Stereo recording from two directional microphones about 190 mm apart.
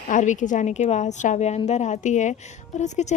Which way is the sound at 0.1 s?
40° left (ahead or behind).